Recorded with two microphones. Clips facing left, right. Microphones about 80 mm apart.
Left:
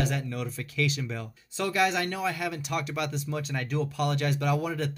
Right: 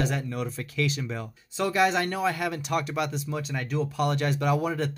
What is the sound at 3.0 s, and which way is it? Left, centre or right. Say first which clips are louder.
Speech: right 2 dB; centre.